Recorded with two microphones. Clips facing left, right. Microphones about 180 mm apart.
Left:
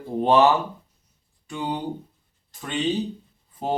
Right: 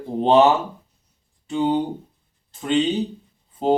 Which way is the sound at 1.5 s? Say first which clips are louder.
Right 9 dB; 20° right (ahead or behind).